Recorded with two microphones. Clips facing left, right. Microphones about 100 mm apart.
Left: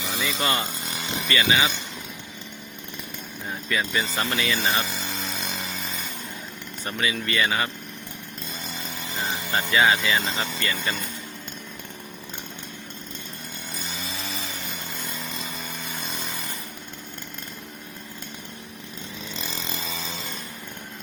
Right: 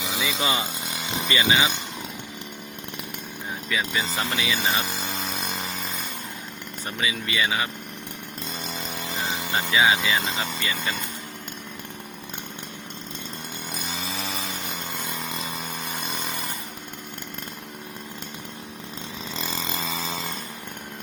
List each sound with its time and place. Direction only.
0.1 s speech: 5° right (ahead or behind)
1.3 s speech: 20° right (ahead or behind)
3.7 s speech: centre (ahead or behind)
4.2 s speech: 15° right (ahead or behind)
7.0 s speech: 10° right (ahead or behind)
9.7 s speech: 5° right (ahead or behind)